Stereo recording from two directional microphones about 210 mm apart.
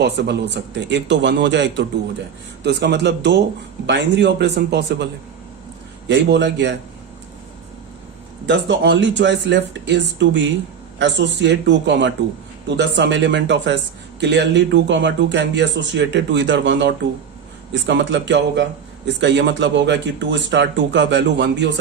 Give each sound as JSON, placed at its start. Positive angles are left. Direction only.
{"t": 0.0, "sound": "a man's voice", "side_deg": -55}
{"t": 6.1, "sound": "a man's voice", "side_deg": -55}
{"t": 8.4, "sound": "a man's voice", "side_deg": -55}